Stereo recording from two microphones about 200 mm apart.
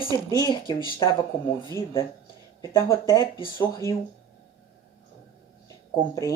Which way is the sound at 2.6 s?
15° left (ahead or behind).